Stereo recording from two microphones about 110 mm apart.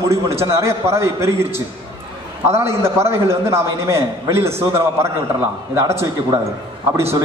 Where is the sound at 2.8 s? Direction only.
25° right (ahead or behind).